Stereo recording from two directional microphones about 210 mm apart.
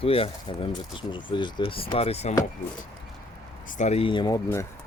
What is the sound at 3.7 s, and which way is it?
Speech, 35° left (ahead or behind).